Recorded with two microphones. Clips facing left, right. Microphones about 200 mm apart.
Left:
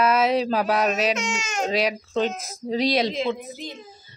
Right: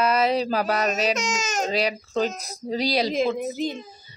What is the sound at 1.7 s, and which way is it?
A child's voice, centre (ahead or behind).